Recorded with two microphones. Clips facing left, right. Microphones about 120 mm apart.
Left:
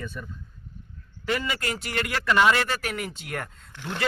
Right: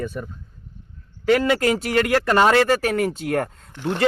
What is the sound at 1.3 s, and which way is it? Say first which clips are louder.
Speech: right 11 dB; 60° right (ahead or behind).